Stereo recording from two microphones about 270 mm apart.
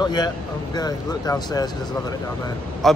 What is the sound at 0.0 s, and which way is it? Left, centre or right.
Speech, centre.